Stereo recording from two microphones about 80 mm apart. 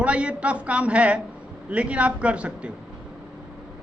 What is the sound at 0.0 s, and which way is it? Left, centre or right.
A woman's voice, centre.